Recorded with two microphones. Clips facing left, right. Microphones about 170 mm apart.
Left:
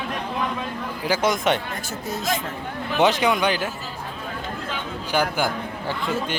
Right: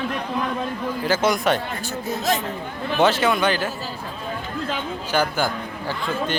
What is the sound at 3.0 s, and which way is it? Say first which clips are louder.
Speech: right 1 dB; 15° left (ahead or behind).